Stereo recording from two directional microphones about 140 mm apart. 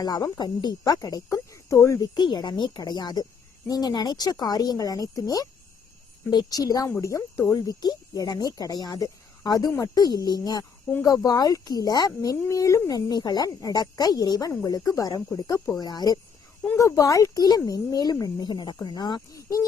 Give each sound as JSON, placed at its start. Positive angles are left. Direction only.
{"t": 0.0, "sound": "speech", "side_deg": 30}
{"t": 2.1, "sound": "speech", "side_deg": 30}